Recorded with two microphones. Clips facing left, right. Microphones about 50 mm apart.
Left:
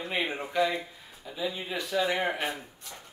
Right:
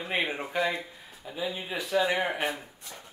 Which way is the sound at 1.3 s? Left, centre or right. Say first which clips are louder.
Even; centre.